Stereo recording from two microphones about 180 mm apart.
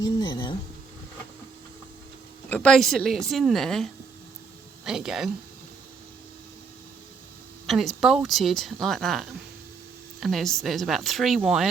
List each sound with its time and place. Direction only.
0.0 s speech: 25° left (ahead or behind)
2.5 s speech: 5° left (ahead or behind)
4.9 s speech: 5° right (ahead or behind)
7.7 s speech: centre (ahead or behind)